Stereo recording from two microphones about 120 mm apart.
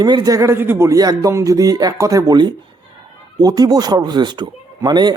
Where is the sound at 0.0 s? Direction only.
35° right (ahead or behind).